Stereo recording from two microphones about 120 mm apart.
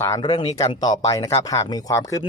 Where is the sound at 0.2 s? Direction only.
40° left (ahead or behind).